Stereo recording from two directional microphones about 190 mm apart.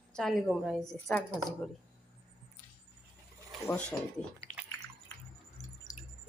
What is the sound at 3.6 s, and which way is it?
Speech, 10° left (ahead or behind).